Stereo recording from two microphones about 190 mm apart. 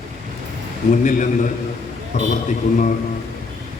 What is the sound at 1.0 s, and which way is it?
A man's voice, 40° left (ahead or behind).